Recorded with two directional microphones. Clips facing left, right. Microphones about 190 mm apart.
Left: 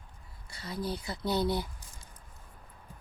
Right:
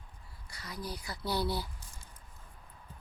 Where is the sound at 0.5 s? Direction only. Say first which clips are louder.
Left 6 dB; 25° left (ahead or behind).